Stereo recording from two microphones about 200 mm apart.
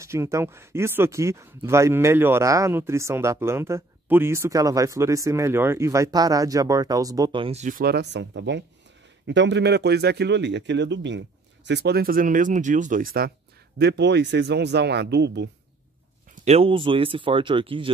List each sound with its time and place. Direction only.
0.0 s a man's voice: 15° right (ahead or behind); by 13.3 s 45° right (ahead or behind)
13.7 s a man's voice: 55° right (ahead or behind)
16.4 s speech: 30° right (ahead or behind)